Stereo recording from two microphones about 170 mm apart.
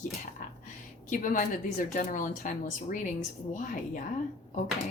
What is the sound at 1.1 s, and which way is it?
A woman's voice, 50° left (ahead or behind).